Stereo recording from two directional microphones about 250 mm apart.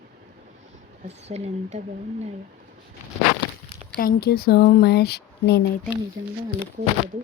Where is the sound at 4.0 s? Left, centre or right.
Left.